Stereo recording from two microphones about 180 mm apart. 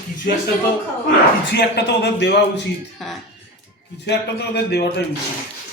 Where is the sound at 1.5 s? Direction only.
65° left (ahead or behind).